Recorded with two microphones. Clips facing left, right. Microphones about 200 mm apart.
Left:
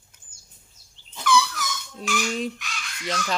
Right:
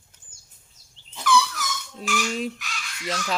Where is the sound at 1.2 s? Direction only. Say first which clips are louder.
Even; centre (ahead or behind).